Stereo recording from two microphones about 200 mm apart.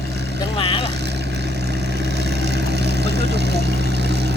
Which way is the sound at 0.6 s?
25° left (ahead or behind).